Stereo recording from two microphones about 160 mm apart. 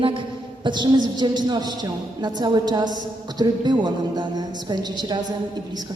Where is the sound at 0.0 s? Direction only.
30° right (ahead or behind).